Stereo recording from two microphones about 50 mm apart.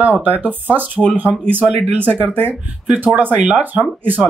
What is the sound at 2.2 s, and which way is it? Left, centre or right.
Speech, left.